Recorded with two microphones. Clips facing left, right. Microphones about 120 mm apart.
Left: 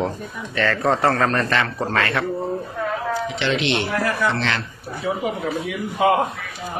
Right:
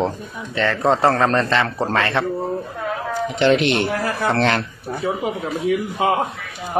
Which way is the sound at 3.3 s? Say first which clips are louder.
Right 9 dB; 50° right (ahead or behind).